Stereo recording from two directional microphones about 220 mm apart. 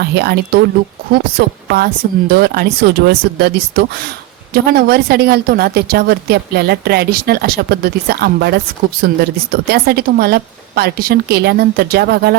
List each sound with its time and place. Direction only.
0.0 s a woman's voice: 50° right (ahead or behind)